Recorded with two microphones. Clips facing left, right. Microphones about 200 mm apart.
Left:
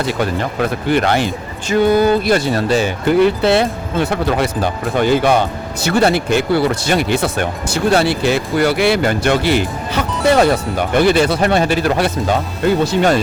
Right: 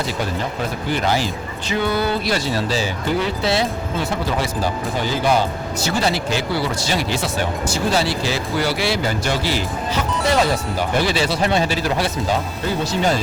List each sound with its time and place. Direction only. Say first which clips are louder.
0.6 s speech: left 8 dB; 65° left (ahead or behind)
1.7 s speech: left 8 dB; 45° left (ahead or behind); by 13.2 s 65° left (ahead or behind)